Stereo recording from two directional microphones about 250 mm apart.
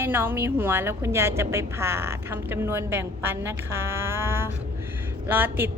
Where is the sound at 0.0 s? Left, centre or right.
Centre.